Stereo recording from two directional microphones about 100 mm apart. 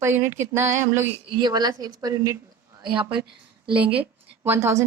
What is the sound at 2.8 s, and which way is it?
Speech, 50° right (ahead or behind).